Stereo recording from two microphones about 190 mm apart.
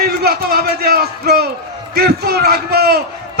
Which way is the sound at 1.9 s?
55° right (ahead or behind).